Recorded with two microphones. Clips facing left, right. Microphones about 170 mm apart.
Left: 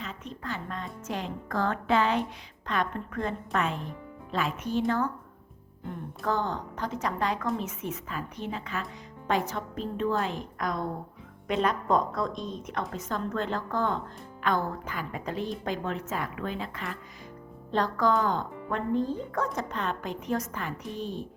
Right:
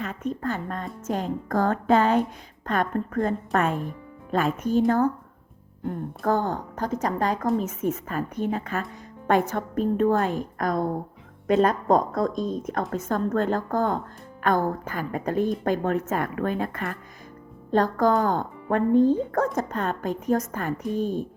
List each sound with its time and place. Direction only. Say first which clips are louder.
0.0 s a woman's voice: right 10 dB; 55° right (ahead or behind)